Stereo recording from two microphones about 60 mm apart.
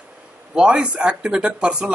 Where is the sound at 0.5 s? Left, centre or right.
Centre.